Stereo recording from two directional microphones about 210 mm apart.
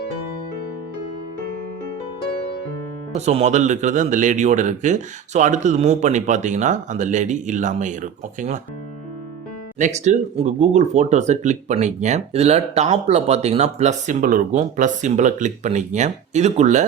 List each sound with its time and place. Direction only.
3.2 s speech: 30° right (ahead or behind)
9.7 s speech: 35° right (ahead or behind)